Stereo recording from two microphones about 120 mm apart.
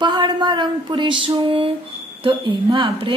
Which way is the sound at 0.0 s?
40° right (ahead or behind).